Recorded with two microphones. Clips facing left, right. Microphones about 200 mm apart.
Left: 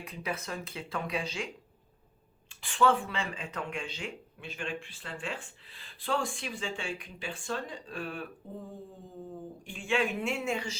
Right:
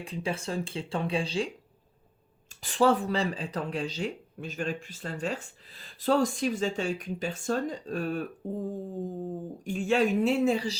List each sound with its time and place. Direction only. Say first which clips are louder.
0.0 s speech: right 5 dB; 30° right (ahead or behind)
2.6 s speech: right 3 dB; 40° right (ahead or behind)